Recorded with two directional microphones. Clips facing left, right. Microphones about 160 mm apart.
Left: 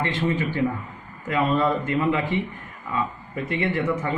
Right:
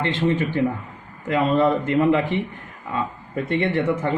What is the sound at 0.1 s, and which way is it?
Speech, 25° right (ahead or behind).